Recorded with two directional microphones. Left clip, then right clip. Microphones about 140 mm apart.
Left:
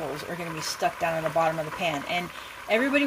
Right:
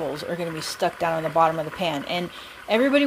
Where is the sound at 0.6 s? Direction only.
50° right (ahead or behind).